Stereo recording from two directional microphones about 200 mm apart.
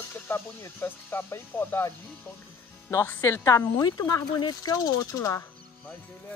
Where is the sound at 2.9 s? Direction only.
15° left (ahead or behind).